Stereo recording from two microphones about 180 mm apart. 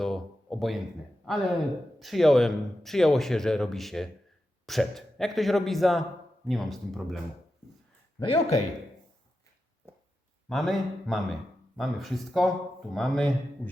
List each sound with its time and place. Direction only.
0.0 s a sound: centre (ahead or behind)
1.2 s speech: centre (ahead or behind)
8.2 s speech: 30° left (ahead or behind)
10.5 s speech: centre (ahead or behind)